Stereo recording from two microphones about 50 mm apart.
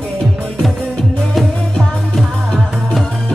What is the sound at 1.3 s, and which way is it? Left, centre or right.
Music, centre.